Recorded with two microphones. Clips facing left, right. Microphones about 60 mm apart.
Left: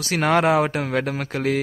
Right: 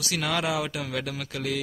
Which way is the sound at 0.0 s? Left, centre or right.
Left.